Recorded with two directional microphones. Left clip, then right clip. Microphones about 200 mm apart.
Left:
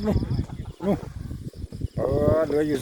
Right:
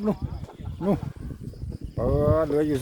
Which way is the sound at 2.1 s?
Centre (ahead or behind).